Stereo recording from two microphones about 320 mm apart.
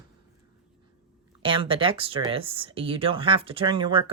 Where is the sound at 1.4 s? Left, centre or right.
Centre.